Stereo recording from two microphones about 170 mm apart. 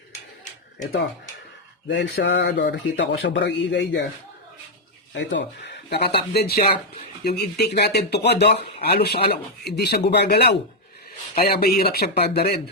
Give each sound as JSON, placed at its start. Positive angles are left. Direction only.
{"t": 1.9, "sound": "a man's voice", "side_deg": 90}
{"t": 5.1, "sound": "speech", "side_deg": 90}
{"t": 6.6, "sound": "speech", "side_deg": 35}
{"t": 7.3, "sound": "speech", "side_deg": 70}
{"t": 11.3, "sound": "speech", "side_deg": 60}